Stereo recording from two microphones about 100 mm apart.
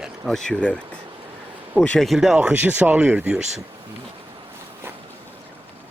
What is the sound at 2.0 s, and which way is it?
Speech, 5° right (ahead or behind).